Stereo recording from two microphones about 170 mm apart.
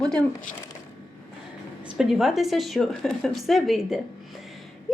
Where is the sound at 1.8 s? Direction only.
5° right (ahead or behind).